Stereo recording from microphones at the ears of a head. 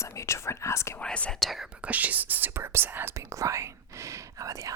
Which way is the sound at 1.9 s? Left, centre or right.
Right.